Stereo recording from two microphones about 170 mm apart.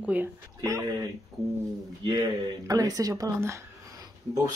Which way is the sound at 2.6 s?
20° right (ahead or behind).